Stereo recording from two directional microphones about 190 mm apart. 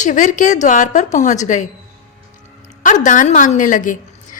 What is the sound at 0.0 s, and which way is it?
A woman's voice, 40° left (ahead or behind).